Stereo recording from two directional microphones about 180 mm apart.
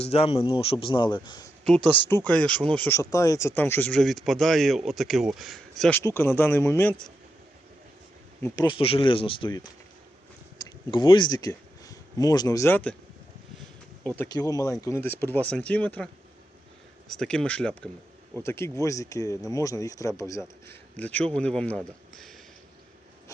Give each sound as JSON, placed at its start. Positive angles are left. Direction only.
{"t": 0.0, "sound": "speech", "side_deg": 35}
{"t": 1.6, "sound": "speech", "side_deg": 5}
{"t": 6.0, "sound": "speech", "side_deg": 15}
{"t": 8.4, "sound": "speech", "side_deg": 15}
{"t": 8.6, "sound": "speech", "side_deg": 30}
{"t": 14.2, "sound": "speech", "side_deg": 20}
{"t": 17.1, "sound": "speech", "side_deg": 5}
{"t": 22.1, "sound": "a sound", "side_deg": 0}